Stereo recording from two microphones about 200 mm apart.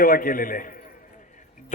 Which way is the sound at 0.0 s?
45° left (ahead or behind).